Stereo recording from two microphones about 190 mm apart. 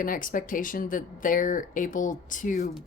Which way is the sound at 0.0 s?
45° left (ahead or behind).